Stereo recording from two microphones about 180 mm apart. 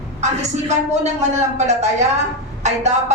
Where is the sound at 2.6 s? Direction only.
40° right (ahead or behind).